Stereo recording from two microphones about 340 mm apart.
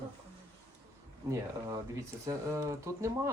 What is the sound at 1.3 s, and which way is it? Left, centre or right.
Speech, centre.